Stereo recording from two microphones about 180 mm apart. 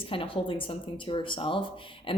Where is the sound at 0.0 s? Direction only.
30° left (ahead or behind).